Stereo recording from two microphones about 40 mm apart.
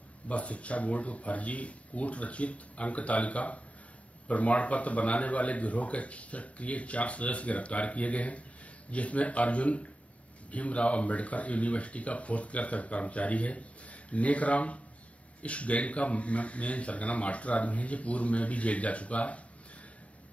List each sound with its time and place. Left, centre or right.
0.3 s speech: left